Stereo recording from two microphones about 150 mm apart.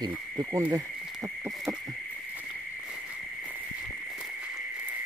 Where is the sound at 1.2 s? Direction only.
20° right (ahead or behind).